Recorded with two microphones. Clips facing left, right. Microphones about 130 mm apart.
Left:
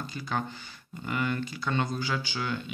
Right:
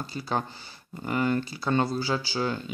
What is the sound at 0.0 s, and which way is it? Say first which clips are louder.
Speech: right 3 dB; 35° right (ahead or behind).